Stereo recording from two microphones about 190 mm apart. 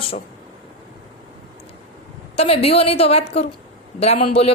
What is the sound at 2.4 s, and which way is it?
A woman's voice, 30° left (ahead or behind).